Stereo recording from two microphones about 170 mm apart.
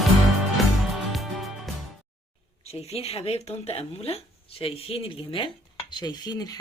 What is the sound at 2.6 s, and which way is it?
Speech, 35° left (ahead or behind).